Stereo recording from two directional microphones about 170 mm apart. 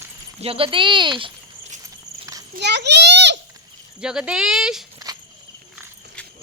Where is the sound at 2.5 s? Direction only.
85° right.